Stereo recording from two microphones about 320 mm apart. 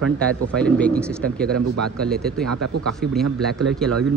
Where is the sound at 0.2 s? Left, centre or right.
Centre.